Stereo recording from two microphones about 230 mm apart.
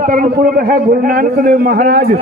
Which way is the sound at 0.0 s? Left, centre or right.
Right.